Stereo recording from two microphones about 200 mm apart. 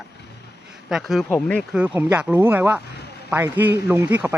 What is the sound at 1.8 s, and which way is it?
Speech, 10° right (ahead or behind).